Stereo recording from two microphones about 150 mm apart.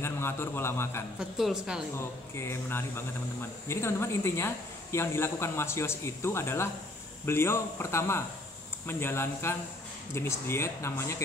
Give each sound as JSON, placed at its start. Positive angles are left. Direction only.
{"t": 0.0, "sound": "a man's voice", "side_deg": 15}
{"t": 1.4, "sound": "a woman's voice", "side_deg": -5}
{"t": 2.0, "sound": "speech", "side_deg": 15}